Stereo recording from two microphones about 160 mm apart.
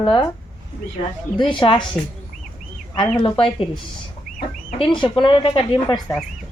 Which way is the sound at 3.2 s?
30° left (ahead or behind).